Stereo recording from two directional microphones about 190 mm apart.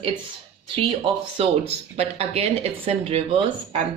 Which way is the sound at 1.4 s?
35° right (ahead or behind).